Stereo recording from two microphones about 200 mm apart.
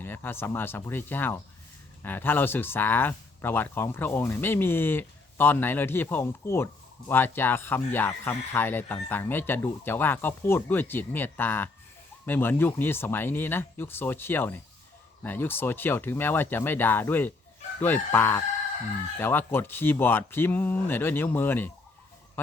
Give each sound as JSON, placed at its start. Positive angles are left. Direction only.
{"t": 0.0, "sound": "speech", "side_deg": 10}